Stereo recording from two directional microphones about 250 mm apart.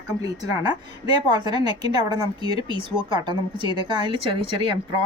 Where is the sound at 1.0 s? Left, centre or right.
Centre.